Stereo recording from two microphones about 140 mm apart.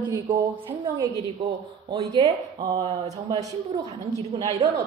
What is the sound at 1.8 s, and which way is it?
Speech, 30° right (ahead or behind).